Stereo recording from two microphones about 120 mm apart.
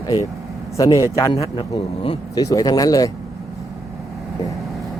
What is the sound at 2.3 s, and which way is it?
Speech, 30° left (ahead or behind).